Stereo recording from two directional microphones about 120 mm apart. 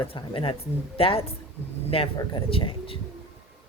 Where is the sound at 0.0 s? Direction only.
50° left (ahead or behind).